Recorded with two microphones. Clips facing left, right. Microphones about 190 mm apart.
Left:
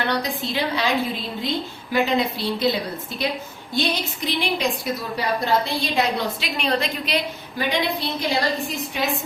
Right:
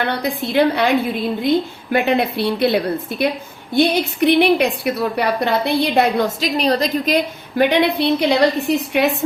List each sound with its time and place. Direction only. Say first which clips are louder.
0.1 s a woman's voice: right 4 dB; 55° right (ahead or behind); by 7.2 s 40° right (ahead or behind)
7.6 s a woman's voice: right 9 dB; 65° right (ahead or behind)